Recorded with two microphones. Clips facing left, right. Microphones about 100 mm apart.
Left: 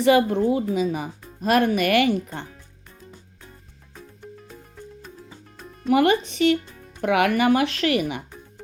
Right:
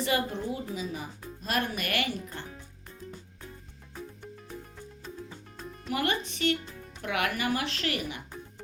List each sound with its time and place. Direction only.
0.0 s speech: 90° left
5.9 s speech: 90° left